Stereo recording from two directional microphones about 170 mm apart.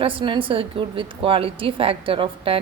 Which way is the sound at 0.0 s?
30° right (ahead or behind).